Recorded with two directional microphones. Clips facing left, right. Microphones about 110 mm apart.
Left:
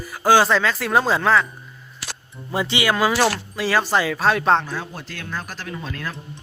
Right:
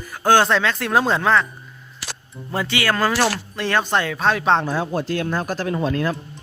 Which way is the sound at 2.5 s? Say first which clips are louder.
Even; 15° left (ahead or behind).